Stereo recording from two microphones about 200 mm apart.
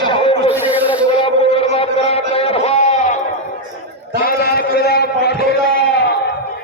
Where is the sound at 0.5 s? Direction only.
10° right (ahead or behind).